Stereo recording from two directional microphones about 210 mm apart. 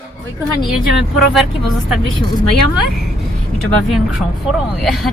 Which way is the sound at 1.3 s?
Centre (ahead or behind).